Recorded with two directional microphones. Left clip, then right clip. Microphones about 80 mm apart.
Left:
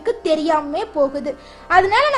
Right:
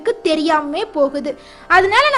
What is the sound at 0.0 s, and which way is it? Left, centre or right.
A woman's voice, right.